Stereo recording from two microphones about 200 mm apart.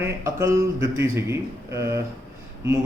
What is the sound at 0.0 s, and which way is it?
Mantra, 15° right (ahead or behind).